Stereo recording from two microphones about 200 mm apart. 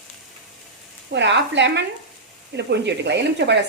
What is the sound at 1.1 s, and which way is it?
Speech, 60° right (ahead or behind).